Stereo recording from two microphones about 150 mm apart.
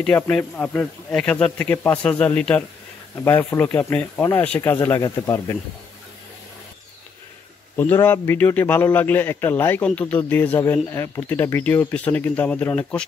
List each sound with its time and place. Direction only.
0.0 s a man's voice: 5° left (ahead or behind); by 5.6 s 25° left (ahead or behind)
7.7 s a man's voice: 15° left (ahead or behind)